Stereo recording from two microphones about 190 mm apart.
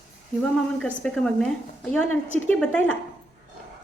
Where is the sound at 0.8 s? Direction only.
5° left (ahead or behind).